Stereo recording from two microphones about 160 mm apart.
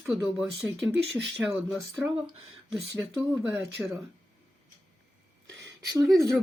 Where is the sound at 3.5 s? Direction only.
15° right (ahead or behind).